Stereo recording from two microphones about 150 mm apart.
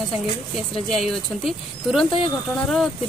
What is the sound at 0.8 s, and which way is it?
Speech, centre (ahead or behind).